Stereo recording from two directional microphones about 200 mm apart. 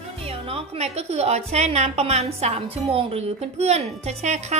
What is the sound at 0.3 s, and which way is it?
A woman's voice, 30° right (ahead or behind).